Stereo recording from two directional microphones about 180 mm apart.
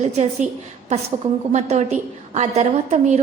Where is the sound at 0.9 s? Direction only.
40° right (ahead or behind).